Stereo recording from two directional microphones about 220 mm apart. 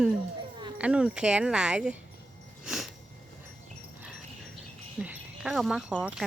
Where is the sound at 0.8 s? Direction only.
5° right (ahead or behind).